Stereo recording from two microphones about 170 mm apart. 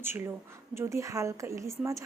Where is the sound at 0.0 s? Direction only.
15° right (ahead or behind).